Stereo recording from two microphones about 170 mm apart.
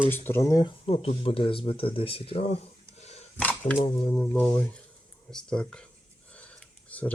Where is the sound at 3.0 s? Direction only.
40° left (ahead or behind).